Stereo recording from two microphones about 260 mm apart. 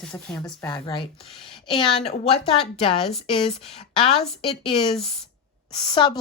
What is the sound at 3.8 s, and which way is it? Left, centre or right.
Speech, left.